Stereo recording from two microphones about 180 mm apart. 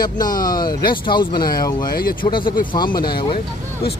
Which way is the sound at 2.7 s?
25° left (ahead or behind).